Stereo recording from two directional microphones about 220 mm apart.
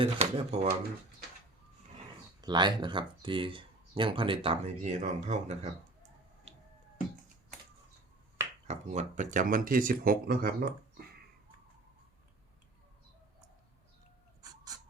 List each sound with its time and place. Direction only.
0.0 s speech: 25° right (ahead or behind)
2.4 s speech: 20° right (ahead or behind)
6.5 s a sound: 30° right (ahead or behind)
8.6 s speech: 30° right (ahead or behind)
14.4 s chicken: 15° right (ahead or behind)